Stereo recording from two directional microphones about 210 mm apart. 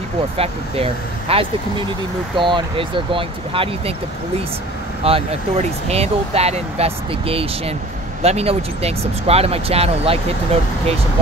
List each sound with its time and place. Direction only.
1.3 s speech: 25° right (ahead or behind)
5.0 s speech: 30° right (ahead or behind)